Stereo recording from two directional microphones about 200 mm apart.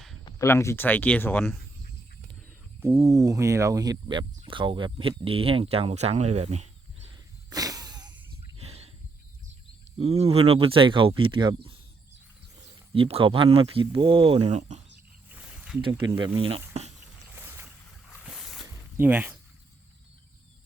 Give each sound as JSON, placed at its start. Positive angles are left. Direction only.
{"t": 0.3, "sound": "speech", "side_deg": 15}
{"t": 2.8, "sound": "speech", "side_deg": -15}
{"t": 7.5, "sound": "a sound", "side_deg": -20}
{"t": 8.5, "sound": "a sound", "side_deg": -30}
{"t": 10.0, "sound": "speech", "side_deg": -30}
{"t": 12.9, "sound": "speech", "side_deg": -25}
{"t": 16.0, "sound": "speech", "side_deg": -25}
{"t": 17.3, "sound": "boat", "side_deg": -10}
{"t": 18.2, "sound": "a sound", "side_deg": 0}